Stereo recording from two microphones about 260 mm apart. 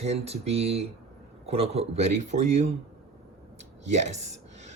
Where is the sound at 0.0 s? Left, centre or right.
Right.